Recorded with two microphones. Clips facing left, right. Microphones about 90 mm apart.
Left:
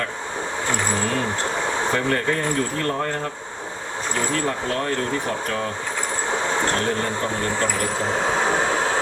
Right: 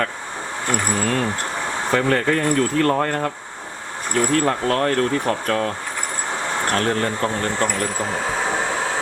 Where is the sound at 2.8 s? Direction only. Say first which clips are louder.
Right 5 dB; 85° right.